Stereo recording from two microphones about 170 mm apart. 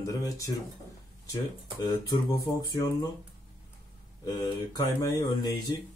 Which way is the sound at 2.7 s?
20° left (ahead or behind).